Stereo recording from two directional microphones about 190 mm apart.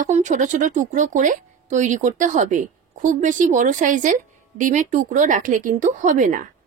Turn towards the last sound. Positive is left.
turn(degrees=-45)  # may be behind; listen again after turning